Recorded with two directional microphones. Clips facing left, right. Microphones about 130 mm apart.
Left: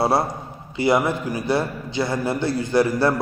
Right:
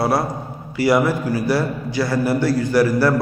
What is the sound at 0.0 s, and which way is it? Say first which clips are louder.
A man's voice: right 1 dB; 25° left (ahead or behind).